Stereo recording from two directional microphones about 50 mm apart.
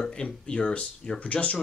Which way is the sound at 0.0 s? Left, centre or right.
Centre.